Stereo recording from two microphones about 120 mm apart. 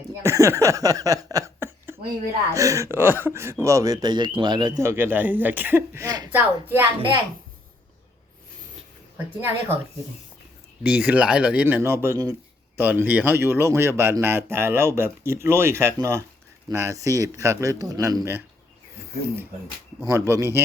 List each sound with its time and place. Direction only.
0.2 s speech: 25° right (ahead or behind)
1.5 s a sound: 20° right (ahead or behind)
2.5 s speech: 25° right (ahead or behind)
4.8 s speech: 20° right (ahead or behind)
9.1 s speech: 20° right (ahead or behind)
10.8 s speech: 10° right (ahead or behind); by 18.2 s 30° right (ahead or behind)
20.1 s speech: 20° right (ahead or behind)